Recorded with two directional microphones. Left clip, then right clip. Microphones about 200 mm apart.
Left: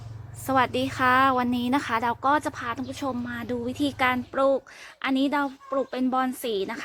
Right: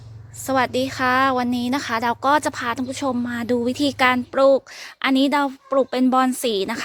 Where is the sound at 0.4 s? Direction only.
20° right (ahead or behind).